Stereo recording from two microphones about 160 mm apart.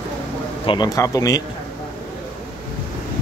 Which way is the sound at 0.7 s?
25° left (ahead or behind).